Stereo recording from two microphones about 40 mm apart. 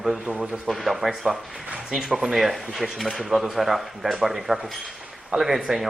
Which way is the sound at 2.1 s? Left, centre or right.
Centre.